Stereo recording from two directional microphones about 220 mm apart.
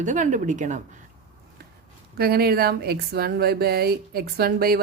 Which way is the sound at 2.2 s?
45° right (ahead or behind).